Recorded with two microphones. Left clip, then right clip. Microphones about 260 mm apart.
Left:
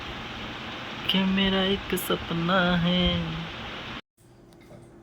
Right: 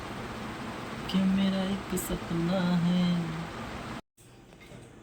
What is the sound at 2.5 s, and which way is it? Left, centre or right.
Speech, centre.